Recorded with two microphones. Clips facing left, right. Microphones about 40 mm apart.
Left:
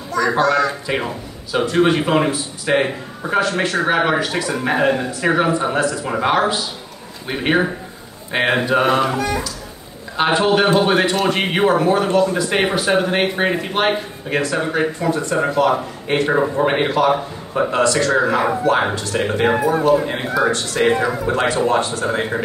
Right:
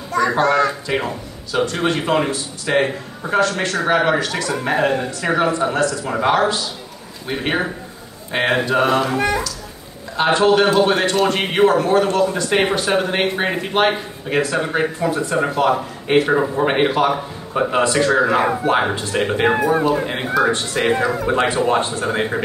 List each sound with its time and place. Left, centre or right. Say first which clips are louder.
0.4 s speech: even; right
0.8 s speech: even; centre
4.3 s speech: left 1 dB; centre
4.6 s speech: left 1 dB; centre
9.1 s speech: right 2 dB; right
10.1 s speech: right 1 dB; centre
16.6 s speech: even; centre
19.6 s speech: even; right
20.8 s speech: left 3 dB; centre
21.3 s speech: even; right